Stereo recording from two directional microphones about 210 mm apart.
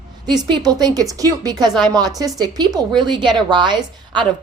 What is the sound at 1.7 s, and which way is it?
Speech, centre (ahead or behind).